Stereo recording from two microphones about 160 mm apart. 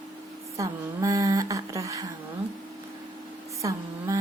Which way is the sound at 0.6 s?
20° right (ahead or behind).